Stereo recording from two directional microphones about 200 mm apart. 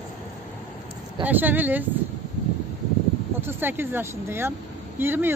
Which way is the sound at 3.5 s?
10° right (ahead or behind).